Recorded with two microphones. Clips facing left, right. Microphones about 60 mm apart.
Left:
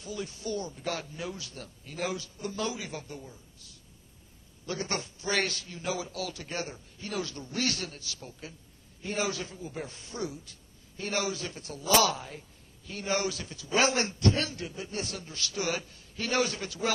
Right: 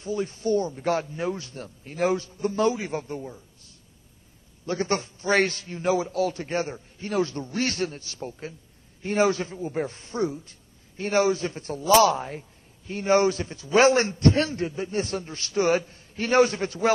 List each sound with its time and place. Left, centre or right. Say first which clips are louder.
0.0 s a man's voice: right 9 dB; right